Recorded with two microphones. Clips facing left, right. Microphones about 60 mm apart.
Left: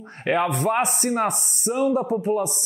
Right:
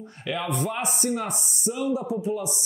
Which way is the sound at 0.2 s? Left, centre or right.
Left.